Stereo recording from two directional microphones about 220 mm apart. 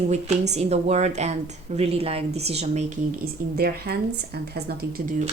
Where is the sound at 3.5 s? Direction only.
45° right (ahead or behind).